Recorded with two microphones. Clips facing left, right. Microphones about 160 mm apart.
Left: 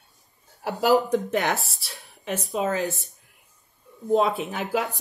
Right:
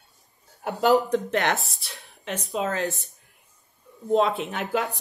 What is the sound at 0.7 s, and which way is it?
Speech, centre (ahead or behind).